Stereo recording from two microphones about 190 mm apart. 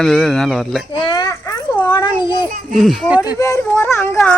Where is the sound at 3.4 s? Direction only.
15° left (ahead or behind).